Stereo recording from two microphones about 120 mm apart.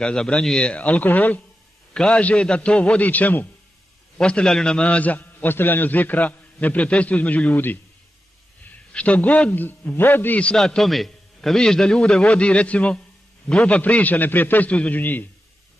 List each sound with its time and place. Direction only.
0.0 s a man's voice: 5° left (ahead or behind)